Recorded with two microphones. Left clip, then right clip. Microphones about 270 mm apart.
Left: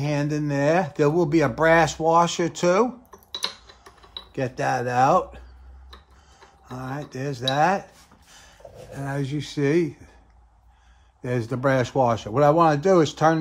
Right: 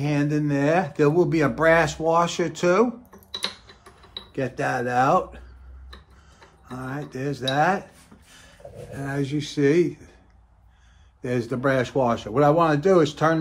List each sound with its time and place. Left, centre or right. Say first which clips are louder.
0.0 s speech: right 1 dB; left
4.3 s speech: left 1 dB; left
6.7 s speech: even; left
11.2 s speech: even; left